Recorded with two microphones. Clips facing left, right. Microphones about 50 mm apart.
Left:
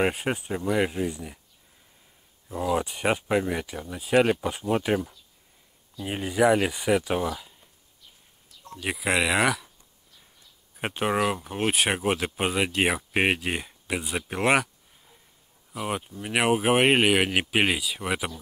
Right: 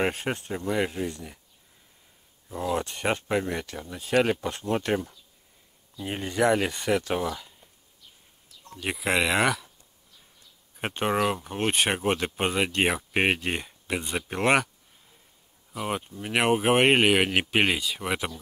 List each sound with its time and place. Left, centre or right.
0.0 s speech: centre
2.4 s speech: centre
8.6 s speech: centre
10.8 s speech: centre
15.7 s speech: centre